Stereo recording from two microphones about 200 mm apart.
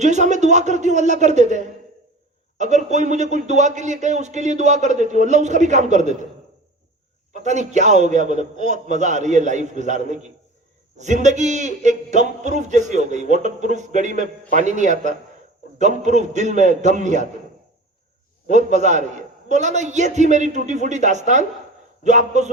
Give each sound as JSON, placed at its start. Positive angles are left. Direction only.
{"t": 0.0, "sound": "a man's voice", "side_deg": -35}
{"t": 7.4, "sound": "a man's voice", "side_deg": -35}
{"t": 18.5, "sound": "a man's voice", "side_deg": -35}